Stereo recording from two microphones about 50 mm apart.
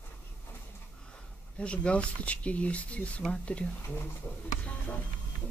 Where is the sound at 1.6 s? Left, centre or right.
Left.